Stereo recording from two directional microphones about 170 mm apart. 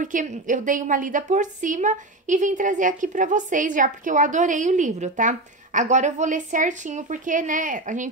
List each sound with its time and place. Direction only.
0.0 s a woman's voice: 50° right (ahead or behind)